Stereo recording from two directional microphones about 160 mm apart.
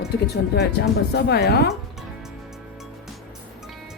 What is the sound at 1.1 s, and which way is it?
Speech, 90° left.